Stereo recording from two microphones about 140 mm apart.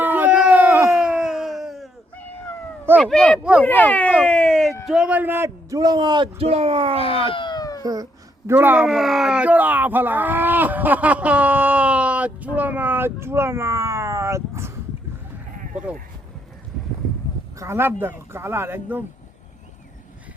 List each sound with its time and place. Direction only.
0.0 s a sound: 15° right (ahead or behind)
1.1 s a sound: 5° right (ahead or behind)
3.0 s speech: 5° left (ahead or behind)
4.9 s speech: 5° right (ahead or behind); by 6.2 s 30° right (ahead or behind)
6.4 s speech: 45° right (ahead or behind)
6.9 s speech: 40° left (ahead or behind)
7.8 s cat: 25° right (ahead or behind)
8.4 s speech: 15° right (ahead or behind)
15.5 s sheep: 75° right (ahead or behind)
17.6 s speech: 20° right (ahead or behind)